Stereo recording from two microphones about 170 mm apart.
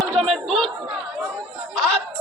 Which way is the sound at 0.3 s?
Centre (ahead or behind).